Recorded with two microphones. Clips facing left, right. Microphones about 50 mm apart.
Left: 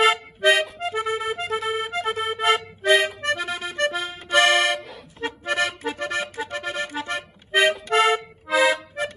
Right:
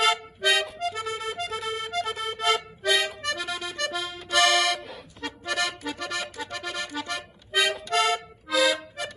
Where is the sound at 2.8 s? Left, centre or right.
Left.